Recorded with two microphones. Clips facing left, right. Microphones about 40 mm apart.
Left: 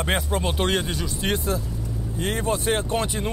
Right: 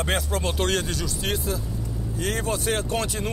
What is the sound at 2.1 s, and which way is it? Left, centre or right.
Speech, left.